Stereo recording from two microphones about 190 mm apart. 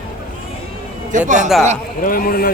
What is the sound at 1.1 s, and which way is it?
Speech, 40° right (ahead or behind).